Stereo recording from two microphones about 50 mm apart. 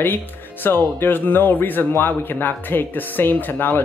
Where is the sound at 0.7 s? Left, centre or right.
Left.